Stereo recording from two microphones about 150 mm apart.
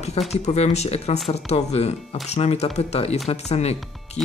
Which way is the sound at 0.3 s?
45° left (ahead or behind).